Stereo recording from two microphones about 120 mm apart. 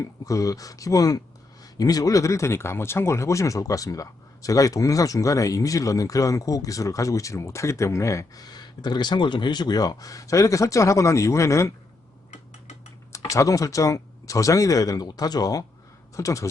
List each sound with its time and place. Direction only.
0.0 s speech: 30° left (ahead or behind)
13.1 s speech: 25° left (ahead or behind)